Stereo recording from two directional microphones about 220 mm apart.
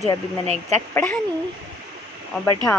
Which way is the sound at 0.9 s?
10° left (ahead or behind).